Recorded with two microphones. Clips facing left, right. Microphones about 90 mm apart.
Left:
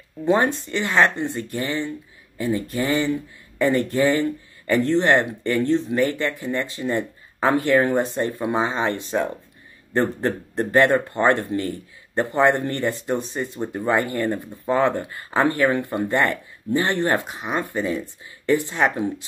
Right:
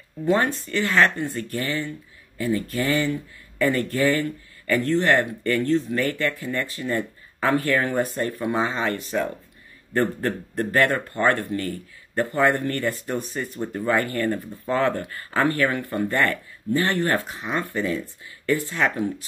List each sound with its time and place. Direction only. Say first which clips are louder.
0.2 s speech: left 2 dB; 20° left (ahead or behind)